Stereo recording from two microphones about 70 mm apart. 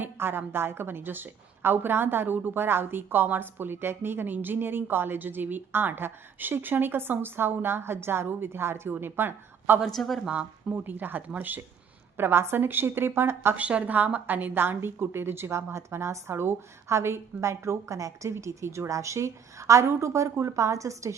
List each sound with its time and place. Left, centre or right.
0.0 s a woman's voice: right
9.8 s speech: centre
10.2 s a woman's voice: right
13.6 s a woman's voice: centre; by 21.2 s right